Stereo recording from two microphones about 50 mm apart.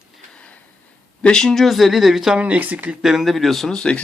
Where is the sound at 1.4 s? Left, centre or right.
Centre.